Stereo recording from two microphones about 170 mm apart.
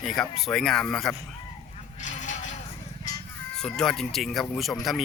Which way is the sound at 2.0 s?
45° left (ahead or behind).